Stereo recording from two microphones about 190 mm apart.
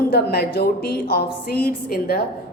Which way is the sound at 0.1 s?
55° left (ahead or behind).